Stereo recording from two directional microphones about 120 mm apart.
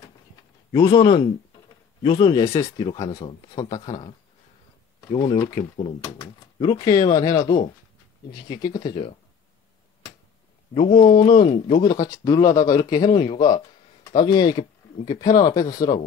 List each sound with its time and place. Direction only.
0.7 s speech: 40° left (ahead or behind)
2.3 s speech: 30° left (ahead or behind)
5.1 s speech: 40° left (ahead or behind)
5.5 s speech: 60° left (ahead or behind)
6.6 s speech: 35° left (ahead or behind)
10.9 s speech: 45° left (ahead or behind)
11.8 s speech: 35° left (ahead or behind)